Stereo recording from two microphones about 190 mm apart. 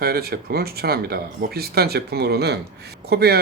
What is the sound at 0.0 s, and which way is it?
Speech, 55° right (ahead or behind).